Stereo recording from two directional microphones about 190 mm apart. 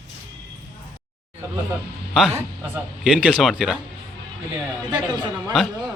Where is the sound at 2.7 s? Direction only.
5° right (ahead or behind).